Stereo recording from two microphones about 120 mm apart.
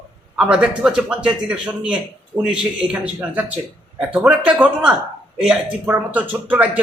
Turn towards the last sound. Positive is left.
turn(degrees=-10)  # may be behind; listen again after turning